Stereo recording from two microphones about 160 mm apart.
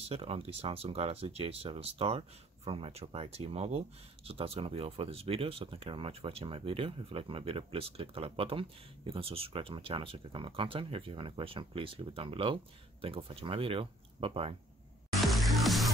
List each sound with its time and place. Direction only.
0.0 s speech: 40° right (ahead or behind)
15.1 s music: centre (ahead or behind)